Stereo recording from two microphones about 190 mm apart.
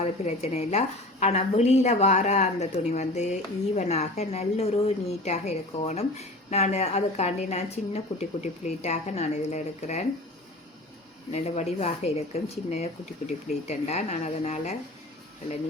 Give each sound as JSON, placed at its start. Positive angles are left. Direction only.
{"t": 0.0, "sound": "a woman's voice", "side_deg": 35}
{"t": 11.3, "sound": "a woman's voice", "side_deg": 35}